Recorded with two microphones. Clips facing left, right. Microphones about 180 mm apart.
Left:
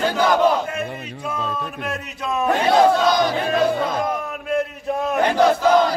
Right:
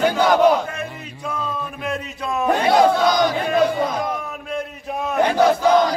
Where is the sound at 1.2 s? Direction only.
5° left (ahead or behind).